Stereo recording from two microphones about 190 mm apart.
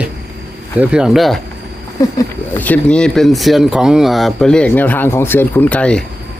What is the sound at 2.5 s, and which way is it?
Speech, 10° left (ahead or behind).